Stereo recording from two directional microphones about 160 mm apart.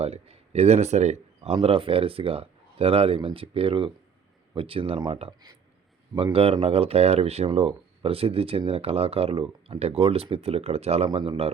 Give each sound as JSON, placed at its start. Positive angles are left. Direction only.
{"t": 0.0, "sound": "speech", "side_deg": -40}